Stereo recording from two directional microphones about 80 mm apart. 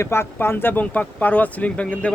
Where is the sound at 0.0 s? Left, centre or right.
Left.